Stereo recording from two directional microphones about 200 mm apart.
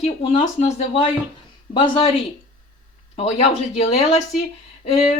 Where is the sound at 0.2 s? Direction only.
30° left (ahead or behind).